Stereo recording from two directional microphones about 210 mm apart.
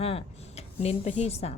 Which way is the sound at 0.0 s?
30° left (ahead or behind).